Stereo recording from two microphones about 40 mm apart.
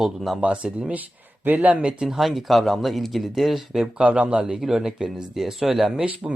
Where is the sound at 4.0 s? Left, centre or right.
Right.